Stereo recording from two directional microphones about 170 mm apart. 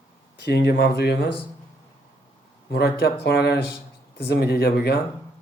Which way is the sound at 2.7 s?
85° left.